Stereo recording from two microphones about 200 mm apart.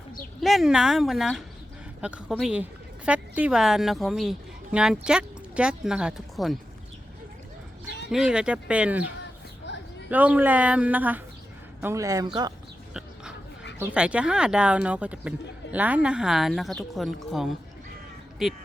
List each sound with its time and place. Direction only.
0.4 s a woman's voice: centre (ahead or behind)
8.1 s speech: 5° right (ahead or behind)
9.7 s a sound: 60° left (ahead or behind)
10.1 s speech: 5° right (ahead or behind)
12.9 s a sound: 5° right (ahead or behind)
13.7 s speech: 10° right (ahead or behind)